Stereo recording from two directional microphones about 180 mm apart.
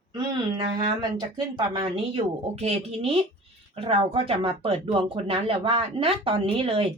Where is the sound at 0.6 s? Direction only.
25° right (ahead or behind).